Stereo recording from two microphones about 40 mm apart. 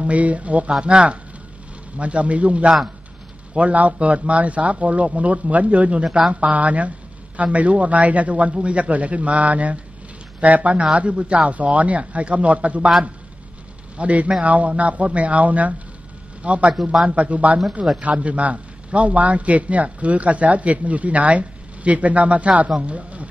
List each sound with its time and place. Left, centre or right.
0.0 s a man's voice: right
0.7 s a man's voice: right
6.0 s speech: centre
6.4 s a man's voice: right
13.9 s a man's voice: right
17.8 s speech: centre
18.1 s a man's voice: right